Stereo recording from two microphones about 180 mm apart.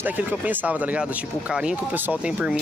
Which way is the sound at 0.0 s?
10° right (ahead or behind).